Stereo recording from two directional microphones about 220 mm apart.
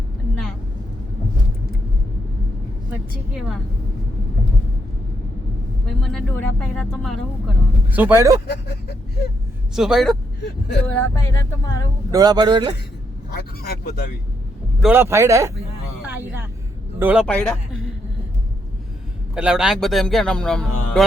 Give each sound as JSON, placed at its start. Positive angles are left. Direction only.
{"t": 3.3, "sound": "speech", "side_deg": -5}
{"t": 5.8, "sound": "speech", "side_deg": 0}
{"t": 8.4, "sound": "speech", "side_deg": 50}
{"t": 9.7, "sound": "speech", "side_deg": 0}
{"t": 10.4, "sound": "speech", "side_deg": 50}
{"t": 10.9, "sound": "speech", "side_deg": 10}
{"t": 12.1, "sound": "speech", "side_deg": -20}
{"t": 13.3, "sound": "speech", "side_deg": 45}
{"t": 14.8, "sound": "speech", "side_deg": -10}
{"t": 16.0, "sound": "vehicle", "side_deg": -10}
{"t": 17.0, "sound": "speech", "side_deg": -5}
{"t": 17.2, "sound": "speech", "side_deg": 5}
{"t": 19.3, "sound": "speech", "side_deg": -5}